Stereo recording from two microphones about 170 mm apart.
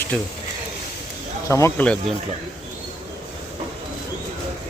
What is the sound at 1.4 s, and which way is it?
Speech, 15° left (ahead or behind).